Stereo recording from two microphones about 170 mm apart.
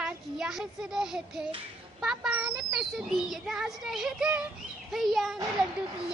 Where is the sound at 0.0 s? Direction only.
5° right (ahead or behind).